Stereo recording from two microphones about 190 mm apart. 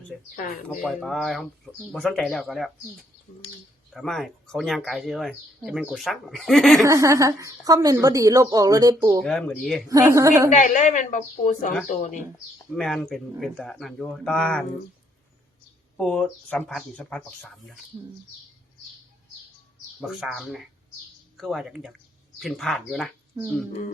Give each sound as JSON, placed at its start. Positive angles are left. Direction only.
{"t": 0.3, "sound": "speech", "side_deg": 50}
{"t": 0.8, "sound": "speech", "side_deg": 0}
{"t": 3.9, "sound": "speech", "side_deg": 0}
{"t": 6.8, "sound": "a woman's voice", "side_deg": -15}
{"t": 9.2, "sound": "speech", "side_deg": 5}
{"t": 9.9, "sound": "a woman's voice", "side_deg": -15}
{"t": 10.5, "sound": "a woman's voice", "side_deg": 40}
{"t": 12.7, "sound": "speech", "side_deg": 0}
{"t": 16.0, "sound": "speech", "side_deg": 5}
{"t": 20.0, "sound": "speech", "side_deg": -5}